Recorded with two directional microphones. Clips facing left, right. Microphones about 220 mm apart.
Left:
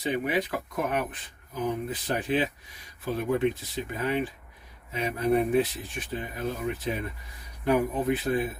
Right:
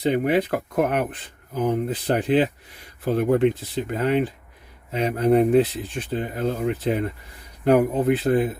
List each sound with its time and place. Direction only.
0.0 s speech: 60° right (ahead or behind)